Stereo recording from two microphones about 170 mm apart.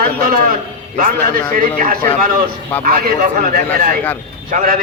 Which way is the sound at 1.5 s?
55° right (ahead or behind).